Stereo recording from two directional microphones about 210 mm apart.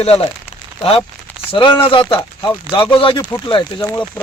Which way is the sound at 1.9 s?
25° left (ahead or behind).